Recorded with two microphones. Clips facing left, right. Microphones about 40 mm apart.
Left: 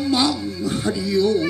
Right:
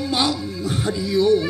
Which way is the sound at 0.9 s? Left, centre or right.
Right.